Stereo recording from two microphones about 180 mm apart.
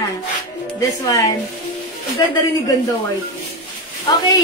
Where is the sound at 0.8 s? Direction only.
20° left (ahead or behind).